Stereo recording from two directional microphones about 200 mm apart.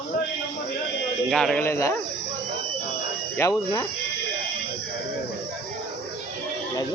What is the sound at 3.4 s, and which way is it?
Speech, 15° left (ahead or behind).